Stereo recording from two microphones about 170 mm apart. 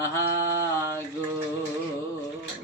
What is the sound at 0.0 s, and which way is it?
Mantra, 15° left (ahead or behind).